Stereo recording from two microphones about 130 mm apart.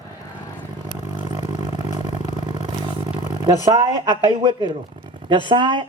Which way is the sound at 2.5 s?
40° right (ahead or behind).